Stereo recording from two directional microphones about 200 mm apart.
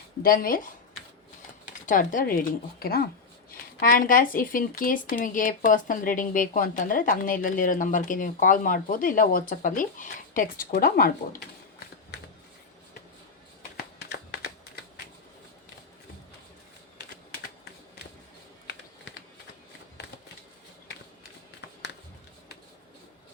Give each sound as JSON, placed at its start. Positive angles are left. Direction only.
{"t": 0.2, "sound": "speech", "side_deg": 45}
{"t": 1.9, "sound": "speech", "side_deg": 40}
{"t": 14.1, "sound": "typing", "side_deg": 50}